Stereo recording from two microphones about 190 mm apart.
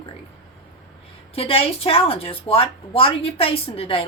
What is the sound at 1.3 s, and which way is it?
Speech, 30° left (ahead or behind).